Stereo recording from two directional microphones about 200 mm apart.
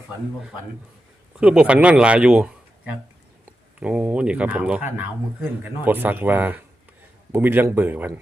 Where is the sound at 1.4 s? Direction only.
5° right (ahead or behind).